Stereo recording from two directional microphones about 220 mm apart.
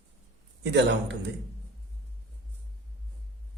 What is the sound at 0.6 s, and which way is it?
Speech, 50° right (ahead or behind).